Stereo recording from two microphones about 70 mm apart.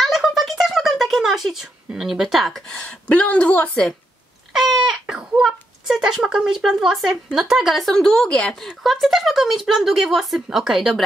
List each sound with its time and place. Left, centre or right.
0.0 s a sound: centre
2.0 s speech: centre
2.7 s speech: centre
4.5 s speech: centre
8.9 s speech: centre